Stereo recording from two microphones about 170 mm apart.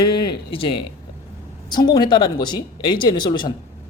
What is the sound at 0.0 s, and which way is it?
Speech, 25° left (ahead or behind).